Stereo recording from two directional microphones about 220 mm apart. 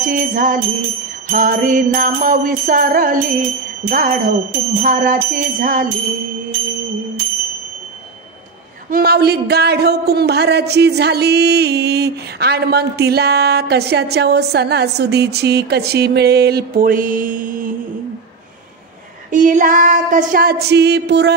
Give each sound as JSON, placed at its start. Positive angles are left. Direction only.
{"t": 0.1, "sound": "speech", "side_deg": -40}
{"t": 8.9, "sound": "speech", "side_deg": -45}
{"t": 19.3, "sound": "speech", "side_deg": -35}